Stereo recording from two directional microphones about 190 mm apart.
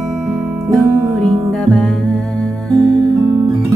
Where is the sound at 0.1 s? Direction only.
5° right (ahead or behind).